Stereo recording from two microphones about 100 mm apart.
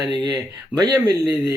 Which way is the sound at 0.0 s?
45° right (ahead or behind).